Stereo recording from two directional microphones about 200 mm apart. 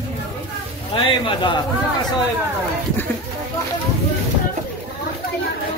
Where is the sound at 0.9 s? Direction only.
25° left (ahead or behind).